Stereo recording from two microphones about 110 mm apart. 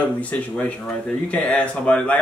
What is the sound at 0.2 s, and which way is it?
Speech, 10° left (ahead or behind).